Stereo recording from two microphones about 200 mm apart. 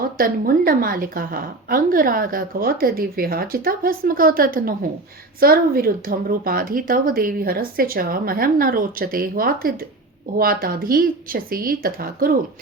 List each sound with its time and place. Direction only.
0.2 s a woman's voice: 45° right (ahead or behind)